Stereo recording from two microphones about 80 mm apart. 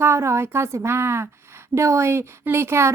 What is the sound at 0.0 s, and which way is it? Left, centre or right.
A child's voice, right.